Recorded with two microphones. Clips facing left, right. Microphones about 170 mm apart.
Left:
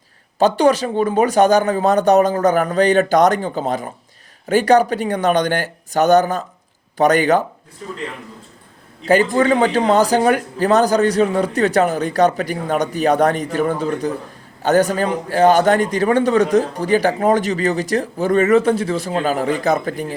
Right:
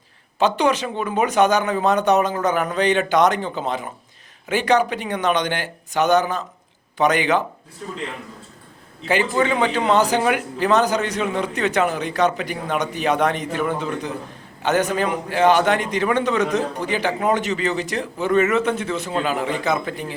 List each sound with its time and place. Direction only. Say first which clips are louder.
0.3 s a man's voice: left 5 dB; 40° left (ahead or behind)
9.0 s a man's voice: left 5 dB; 40° left (ahead or behind)